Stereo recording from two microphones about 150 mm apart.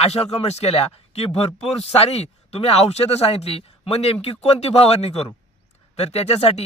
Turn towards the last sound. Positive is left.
turn(degrees=45)  # may be behind; listen again after turning